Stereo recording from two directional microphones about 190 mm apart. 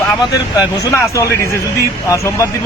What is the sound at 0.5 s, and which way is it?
Speech, 15° left (ahead or behind).